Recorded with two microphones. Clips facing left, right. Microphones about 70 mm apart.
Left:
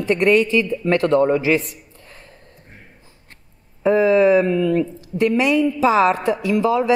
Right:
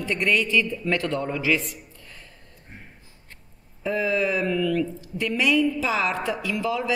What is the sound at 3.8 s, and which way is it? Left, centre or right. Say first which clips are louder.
Speech: left 10 dB; left.